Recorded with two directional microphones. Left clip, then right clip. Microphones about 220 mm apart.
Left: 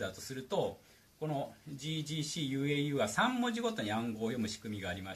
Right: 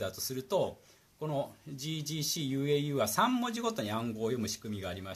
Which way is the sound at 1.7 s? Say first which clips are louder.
Right 2 dB; 50° right (ahead or behind).